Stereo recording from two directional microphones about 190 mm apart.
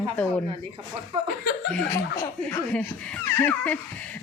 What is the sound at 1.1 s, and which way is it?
Speech, 30° right (ahead or behind).